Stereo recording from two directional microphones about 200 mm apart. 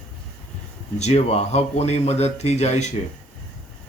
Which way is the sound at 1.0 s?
35° left (ahead or behind).